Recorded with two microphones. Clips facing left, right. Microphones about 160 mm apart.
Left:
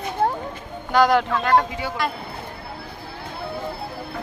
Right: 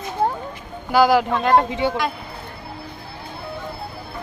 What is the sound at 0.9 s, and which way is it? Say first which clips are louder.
Speech: right 2 dB; 5° right (ahead or behind).